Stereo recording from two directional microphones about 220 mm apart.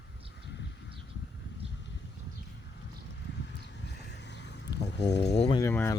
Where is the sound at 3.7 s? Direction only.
50° left (ahead or behind).